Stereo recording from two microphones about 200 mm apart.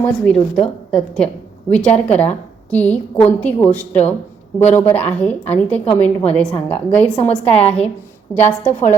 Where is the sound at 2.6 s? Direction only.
5° left (ahead or behind).